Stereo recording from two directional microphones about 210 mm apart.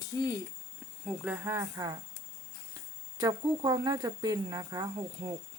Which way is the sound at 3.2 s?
20° right (ahead or behind).